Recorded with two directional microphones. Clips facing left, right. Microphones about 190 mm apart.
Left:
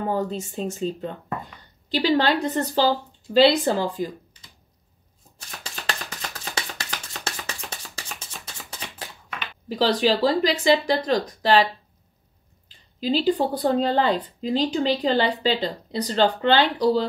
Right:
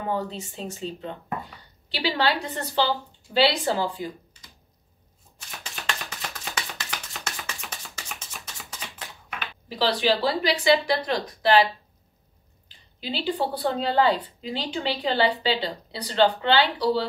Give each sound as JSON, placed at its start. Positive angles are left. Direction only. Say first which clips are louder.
{"t": 0.1, "sound": "a woman's voice", "louder": "left 3 dB", "side_deg": 45}
{"t": 6.0, "sound": "music", "louder": "left 1 dB", "side_deg": 40}
{"t": 8.6, "sound": "a sound", "louder": "left 2 dB", "side_deg": 35}
{"t": 9.7, "sound": "speech", "louder": "left 3 dB", "side_deg": 40}
{"t": 13.0, "sound": "speech", "louder": "left 6 dB", "side_deg": 40}